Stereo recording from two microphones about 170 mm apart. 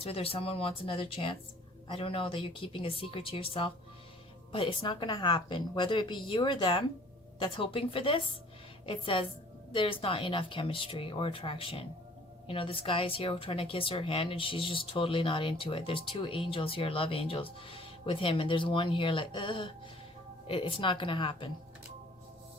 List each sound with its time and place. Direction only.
0.0 s a woman's voice: 35° left (ahead or behind)